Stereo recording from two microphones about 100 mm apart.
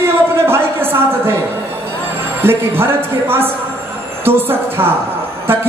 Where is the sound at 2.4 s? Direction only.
25° right (ahead or behind).